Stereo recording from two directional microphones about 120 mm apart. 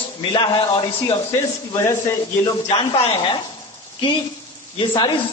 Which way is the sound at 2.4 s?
40° left (ahead or behind).